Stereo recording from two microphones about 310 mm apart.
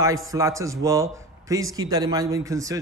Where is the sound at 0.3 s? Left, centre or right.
Centre.